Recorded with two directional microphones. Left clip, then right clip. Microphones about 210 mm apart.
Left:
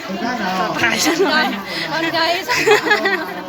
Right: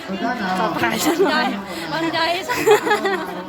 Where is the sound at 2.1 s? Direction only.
Centre (ahead or behind).